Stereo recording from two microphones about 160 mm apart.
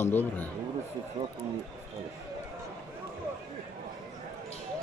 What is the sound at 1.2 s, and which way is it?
Speech, 35° right (ahead or behind).